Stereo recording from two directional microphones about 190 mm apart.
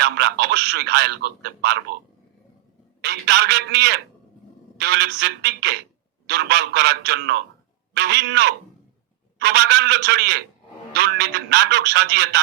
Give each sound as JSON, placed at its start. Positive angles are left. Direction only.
{"t": 0.0, "sound": "speech", "side_deg": -60}
{"t": 3.0, "sound": "speech", "side_deg": -60}